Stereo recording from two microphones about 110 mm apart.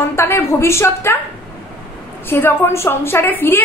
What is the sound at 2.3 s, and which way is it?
A woman's voice, 20° left (ahead or behind).